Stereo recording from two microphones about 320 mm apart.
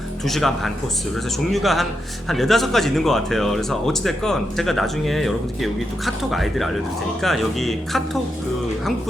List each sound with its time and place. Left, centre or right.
0.3 s speech: centre